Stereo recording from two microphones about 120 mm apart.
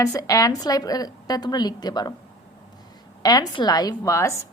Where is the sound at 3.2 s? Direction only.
35° left (ahead or behind).